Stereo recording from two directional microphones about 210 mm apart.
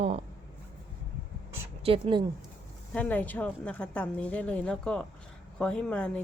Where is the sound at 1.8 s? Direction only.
25° right (ahead or behind).